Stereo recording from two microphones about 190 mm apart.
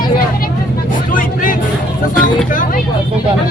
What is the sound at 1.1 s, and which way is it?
Vehicle, 45° left (ahead or behind).